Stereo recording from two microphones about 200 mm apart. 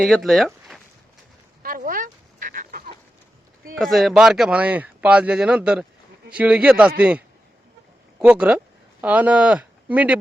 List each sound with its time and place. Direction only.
0.0 s speech: centre (ahead or behind)
1.6 s chicken: 45° right (ahead or behind)
3.8 s speech: centre (ahead or behind)
8.2 s speech: 5° right (ahead or behind)